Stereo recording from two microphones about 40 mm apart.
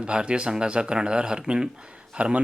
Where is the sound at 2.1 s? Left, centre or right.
Right.